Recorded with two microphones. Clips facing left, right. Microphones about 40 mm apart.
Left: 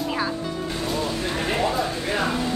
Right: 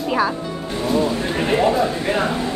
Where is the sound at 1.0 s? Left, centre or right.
Right.